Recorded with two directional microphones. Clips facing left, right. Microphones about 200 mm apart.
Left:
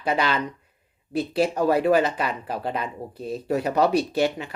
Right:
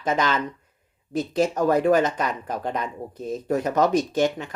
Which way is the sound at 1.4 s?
10° left (ahead or behind).